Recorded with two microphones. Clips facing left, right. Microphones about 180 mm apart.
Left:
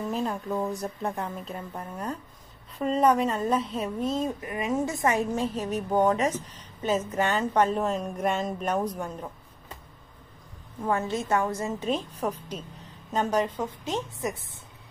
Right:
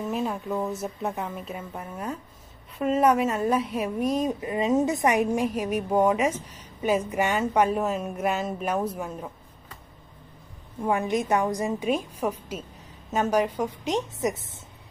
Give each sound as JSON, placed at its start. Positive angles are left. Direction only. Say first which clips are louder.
{"t": 0.0, "sound": "a woman's voice", "louder": "right 1 dB", "side_deg": -5}
{"t": 10.8, "sound": "a woman's voice", "louder": "right 3 dB", "side_deg": -15}